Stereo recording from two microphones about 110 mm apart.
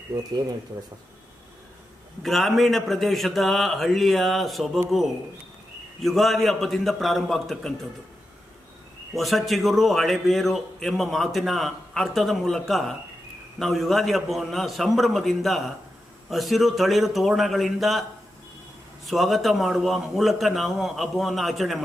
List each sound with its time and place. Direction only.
0.1 s speech: 35° right (ahead or behind)
2.2 s a man's voice: centre (ahead or behind)
6.0 s a man's voice: centre (ahead or behind)
9.1 s a man's voice: centre (ahead or behind)
19.0 s a man's voice: centre (ahead or behind)